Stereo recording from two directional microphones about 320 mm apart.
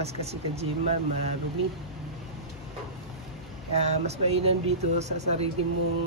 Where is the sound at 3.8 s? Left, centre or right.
Centre.